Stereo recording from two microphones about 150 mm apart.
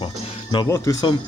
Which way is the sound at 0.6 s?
20° left (ahead or behind).